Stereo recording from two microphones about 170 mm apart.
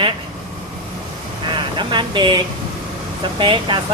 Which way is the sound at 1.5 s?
25° right (ahead or behind).